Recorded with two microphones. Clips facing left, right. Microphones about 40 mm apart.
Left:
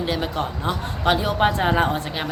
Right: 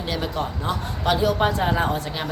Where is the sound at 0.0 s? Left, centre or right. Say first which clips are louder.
Left 2 dB; centre.